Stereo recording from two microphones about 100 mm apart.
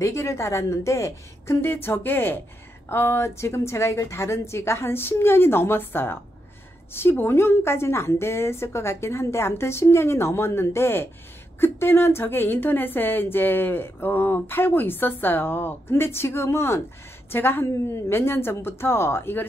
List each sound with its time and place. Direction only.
0.0 s a woman's voice: 30° left (ahead or behind)